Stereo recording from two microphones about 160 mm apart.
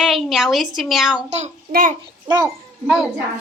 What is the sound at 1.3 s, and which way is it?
Speech, 45° right (ahead or behind).